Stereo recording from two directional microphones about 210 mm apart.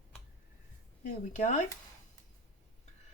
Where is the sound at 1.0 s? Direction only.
40° left (ahead or behind).